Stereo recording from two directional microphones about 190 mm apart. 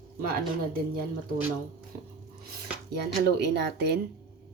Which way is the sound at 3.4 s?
65° right (ahead or behind).